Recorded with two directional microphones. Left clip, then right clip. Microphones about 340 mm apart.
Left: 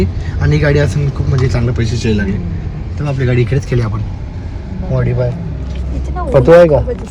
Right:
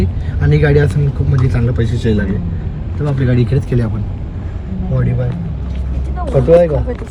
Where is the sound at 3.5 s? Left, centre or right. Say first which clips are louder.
Left 1 dB; left.